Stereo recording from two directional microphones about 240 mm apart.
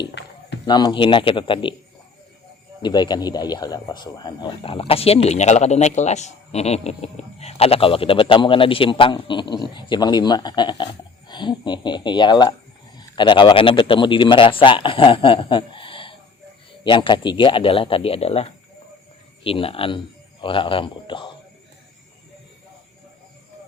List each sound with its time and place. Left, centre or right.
0.6 s a man's voice: centre
2.8 s a man's voice: centre